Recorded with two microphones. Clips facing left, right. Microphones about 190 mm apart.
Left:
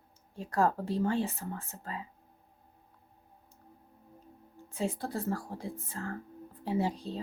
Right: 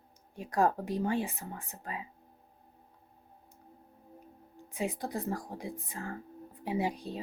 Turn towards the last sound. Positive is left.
turn(degrees=-15)  # may be behind; listen again after turning